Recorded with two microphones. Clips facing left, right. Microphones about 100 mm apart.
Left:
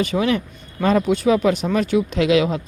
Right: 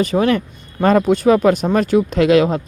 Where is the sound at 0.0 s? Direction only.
40° right (ahead or behind).